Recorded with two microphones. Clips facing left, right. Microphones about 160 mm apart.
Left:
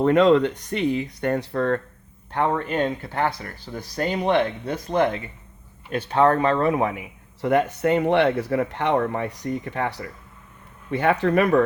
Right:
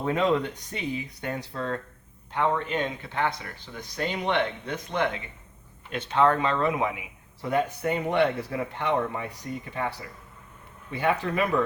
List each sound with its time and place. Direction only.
0.0 s speech: 75° left (ahead or behind)
2.3 s speech: 50° left (ahead or behind)
7.4 s speech: 70° left (ahead or behind)